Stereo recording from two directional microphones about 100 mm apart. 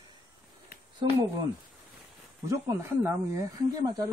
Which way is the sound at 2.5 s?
30° right (ahead or behind).